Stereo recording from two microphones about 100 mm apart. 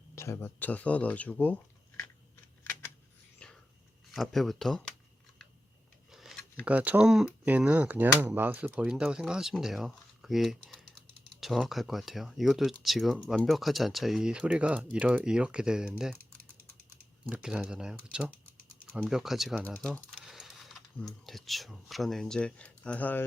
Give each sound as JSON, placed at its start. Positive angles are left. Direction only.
{"t": 0.2, "sound": "speech", "side_deg": 25}
{"t": 2.0, "sound": "computer keyboard", "side_deg": 20}
{"t": 3.4, "sound": "whispering", "side_deg": 10}
{"t": 4.1, "sound": "speech", "side_deg": 0}
{"t": 6.1, "sound": "a sound", "side_deg": 0}
{"t": 6.7, "sound": "speech", "side_deg": -15}
{"t": 17.2, "sound": "speech", "side_deg": -10}
{"t": 19.6, "sound": "speech", "side_deg": 10}
{"t": 20.1, "sound": "typing", "side_deg": 0}
{"t": 21.2, "sound": "speech", "side_deg": 0}